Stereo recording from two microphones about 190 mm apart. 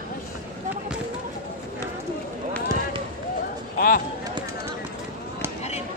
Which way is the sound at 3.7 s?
50° left (ahead or behind).